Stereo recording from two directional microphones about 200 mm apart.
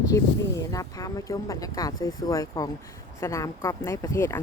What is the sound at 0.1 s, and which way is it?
Speech, 15° left (ahead or behind).